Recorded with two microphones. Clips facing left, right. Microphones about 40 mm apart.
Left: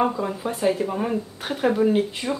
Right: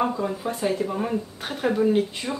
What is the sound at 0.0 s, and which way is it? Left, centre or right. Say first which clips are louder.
Speech: left 2 dB; centre.